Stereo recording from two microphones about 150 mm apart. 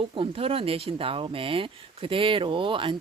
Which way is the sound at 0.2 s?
40° right (ahead or behind).